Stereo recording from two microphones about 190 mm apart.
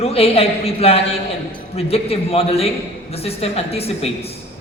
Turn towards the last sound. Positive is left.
turn(degrees=30)  # may be behind; listen again after turning